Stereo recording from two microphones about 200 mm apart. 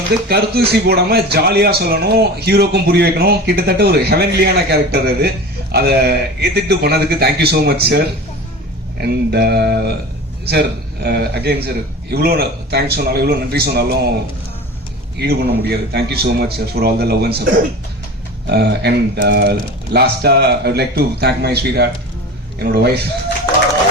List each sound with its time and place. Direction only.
0.3 s a man's voice: 55° right (ahead or behind)
9.0 s a man's voice: 55° right (ahead or behind)
15.2 s a man's voice: 55° right (ahead or behind)